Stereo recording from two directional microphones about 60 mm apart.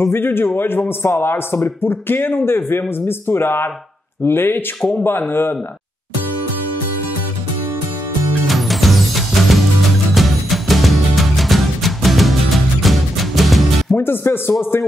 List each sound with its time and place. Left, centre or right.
0.0 s speech: left
8.5 s music: centre
13.9 s speech: left